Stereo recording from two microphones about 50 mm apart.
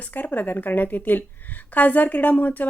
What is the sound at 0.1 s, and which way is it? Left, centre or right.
A woman's voice, left.